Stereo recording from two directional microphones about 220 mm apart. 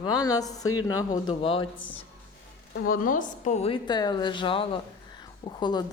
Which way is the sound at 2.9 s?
40° left (ahead or behind).